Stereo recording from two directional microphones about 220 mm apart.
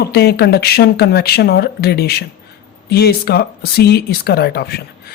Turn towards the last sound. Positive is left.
turn(degrees=45)  # may be behind; listen again after turning